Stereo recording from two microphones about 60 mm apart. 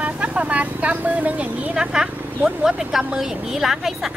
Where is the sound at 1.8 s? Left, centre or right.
Centre.